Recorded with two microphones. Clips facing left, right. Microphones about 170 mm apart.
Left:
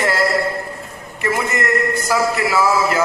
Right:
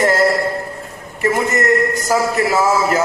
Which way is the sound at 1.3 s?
45° right (ahead or behind).